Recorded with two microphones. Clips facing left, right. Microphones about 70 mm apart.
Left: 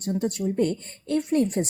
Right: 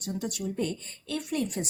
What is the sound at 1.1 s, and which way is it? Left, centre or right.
Speech, left.